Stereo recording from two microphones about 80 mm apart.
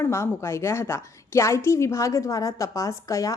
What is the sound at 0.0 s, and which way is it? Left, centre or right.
A woman's voice, left.